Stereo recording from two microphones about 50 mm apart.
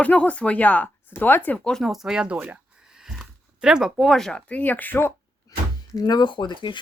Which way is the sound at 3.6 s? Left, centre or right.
Centre.